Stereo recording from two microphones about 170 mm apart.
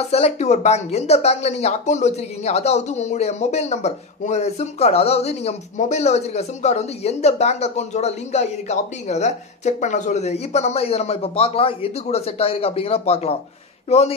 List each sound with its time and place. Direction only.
0.0 s speech: 40° left (ahead or behind)